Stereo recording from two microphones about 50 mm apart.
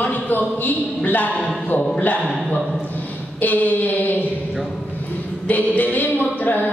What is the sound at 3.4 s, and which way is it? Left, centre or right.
Speech, left.